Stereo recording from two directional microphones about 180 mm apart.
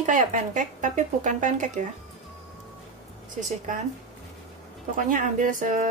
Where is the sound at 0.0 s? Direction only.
45° right (ahead or behind).